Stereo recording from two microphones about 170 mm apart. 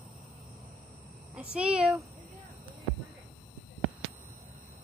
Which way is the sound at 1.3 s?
5° right (ahead or behind).